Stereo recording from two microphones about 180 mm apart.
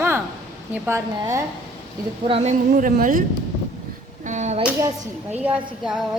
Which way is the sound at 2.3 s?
40° right (ahead or behind).